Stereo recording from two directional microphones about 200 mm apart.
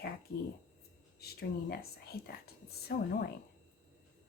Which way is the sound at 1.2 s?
50° left (ahead or behind).